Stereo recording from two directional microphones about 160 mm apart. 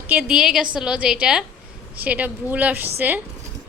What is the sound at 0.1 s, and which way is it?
A woman's voice, 5° right (ahead or behind).